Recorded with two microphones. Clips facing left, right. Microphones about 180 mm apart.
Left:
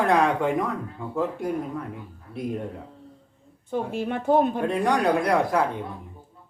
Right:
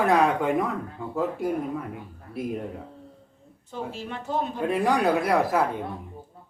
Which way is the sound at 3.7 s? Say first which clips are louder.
Left 7 dB; 55° left (ahead or behind).